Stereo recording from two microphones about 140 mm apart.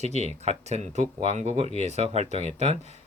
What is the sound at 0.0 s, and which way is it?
Speech, 50° right (ahead or behind).